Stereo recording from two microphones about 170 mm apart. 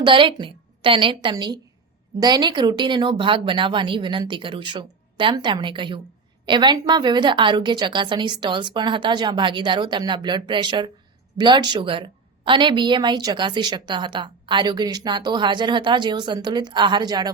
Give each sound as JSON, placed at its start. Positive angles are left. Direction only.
{"t": 0.0, "sound": "a woman's voice", "side_deg": -30}